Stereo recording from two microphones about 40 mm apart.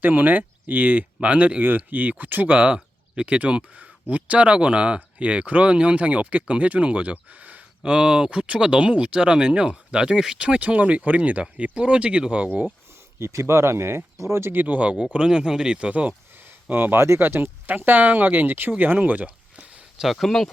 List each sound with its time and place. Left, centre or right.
0.0 s speech: right
1.6 s speech: right
2.7 s speech: right
7.8 s speech: right
13.1 s speech: right
14.6 s speech: right
15.1 s speech: right
15.9 s speech: right
16.3 s a sound: right
16.6 s speech: right
19.0 s speech: right
19.5 s a sound: right
20.1 s speech: centre